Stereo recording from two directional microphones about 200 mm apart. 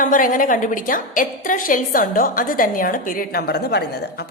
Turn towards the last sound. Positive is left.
turn(degrees=55)  # may be behind; listen again after turning